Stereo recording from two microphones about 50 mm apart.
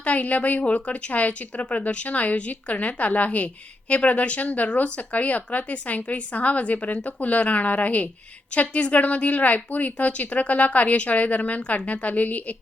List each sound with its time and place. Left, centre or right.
0.0 s a woman's voice: left